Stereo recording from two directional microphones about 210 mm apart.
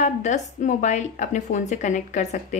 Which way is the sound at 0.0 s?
35° left (ahead or behind).